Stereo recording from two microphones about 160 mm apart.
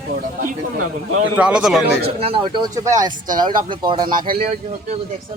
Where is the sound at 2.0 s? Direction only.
35° right (ahead or behind).